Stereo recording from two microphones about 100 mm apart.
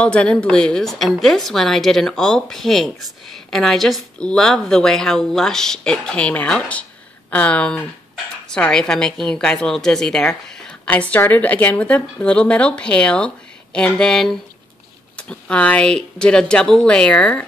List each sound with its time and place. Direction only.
0.0 s a woman's voice: 10° left (ahead or behind)